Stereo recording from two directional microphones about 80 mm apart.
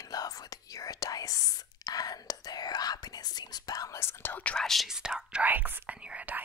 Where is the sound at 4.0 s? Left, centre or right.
Left.